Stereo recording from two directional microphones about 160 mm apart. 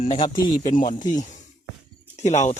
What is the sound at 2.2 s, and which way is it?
Speech, 45° left (ahead or behind).